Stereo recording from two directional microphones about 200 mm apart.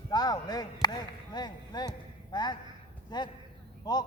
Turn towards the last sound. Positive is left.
turn(degrees=20)  # may be behind; listen again after turning